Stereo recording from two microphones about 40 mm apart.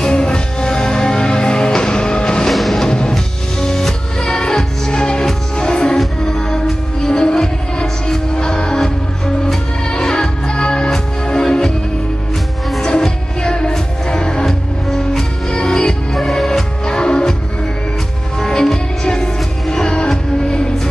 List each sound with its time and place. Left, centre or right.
0.0 s music: left
2.4 s music: centre
2.9 s music: left
13.0 s music: centre
14.4 s music: centre
16.8 s music: left
18.4 s music: centre